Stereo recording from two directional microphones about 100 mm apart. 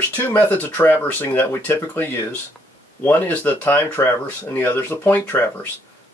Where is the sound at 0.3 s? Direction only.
20° left (ahead or behind).